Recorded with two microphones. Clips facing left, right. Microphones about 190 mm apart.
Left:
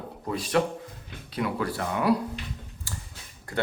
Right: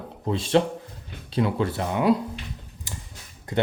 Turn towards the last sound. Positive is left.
turn(degrees=-20)  # may be behind; listen again after turning